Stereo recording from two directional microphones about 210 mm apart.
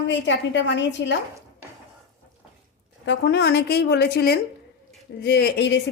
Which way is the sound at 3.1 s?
55° left (ahead or behind).